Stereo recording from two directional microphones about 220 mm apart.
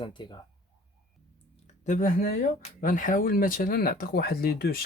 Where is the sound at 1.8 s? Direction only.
35° left (ahead or behind).